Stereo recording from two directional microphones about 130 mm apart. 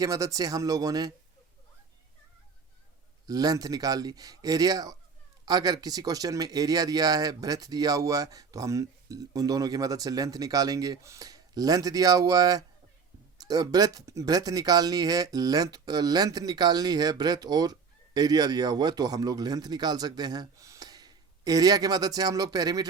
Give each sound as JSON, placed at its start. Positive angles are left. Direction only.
{"t": 0.0, "sound": "speech", "side_deg": -25}
{"t": 3.2, "sound": "speech", "side_deg": -30}